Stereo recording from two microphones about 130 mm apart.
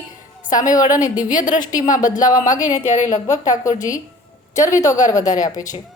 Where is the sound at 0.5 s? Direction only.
30° left (ahead or behind).